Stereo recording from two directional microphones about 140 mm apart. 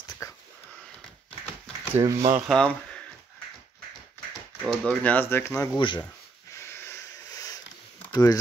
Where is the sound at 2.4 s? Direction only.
5° left (ahead or behind).